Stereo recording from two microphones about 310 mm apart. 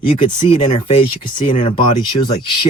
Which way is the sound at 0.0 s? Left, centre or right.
Centre.